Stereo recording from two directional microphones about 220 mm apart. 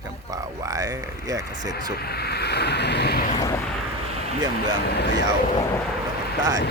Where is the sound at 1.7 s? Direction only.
45° left (ahead or behind).